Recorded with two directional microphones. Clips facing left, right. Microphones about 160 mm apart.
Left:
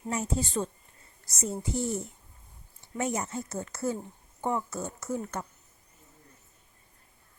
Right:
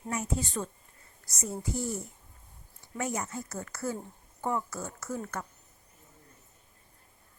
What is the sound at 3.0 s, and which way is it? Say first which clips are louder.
Speech: left 3 dB; 25° left (ahead or behind).